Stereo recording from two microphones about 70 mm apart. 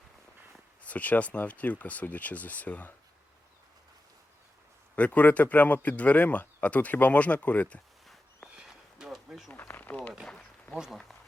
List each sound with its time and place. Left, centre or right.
0.8 s speech: left
4.9 s speech: left
8.5 s a sound: centre
9.5 s speech: left
10.8 s speech: centre